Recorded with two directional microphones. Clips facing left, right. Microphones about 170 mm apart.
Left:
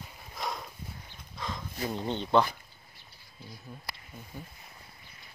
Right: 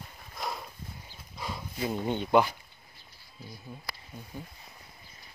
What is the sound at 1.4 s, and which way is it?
Speech, 10° right (ahead or behind).